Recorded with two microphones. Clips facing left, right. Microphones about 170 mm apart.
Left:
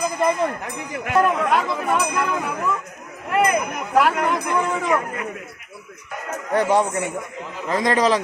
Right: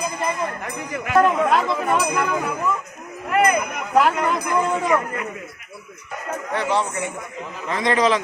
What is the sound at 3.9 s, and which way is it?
Speech, 5° left (ahead or behind).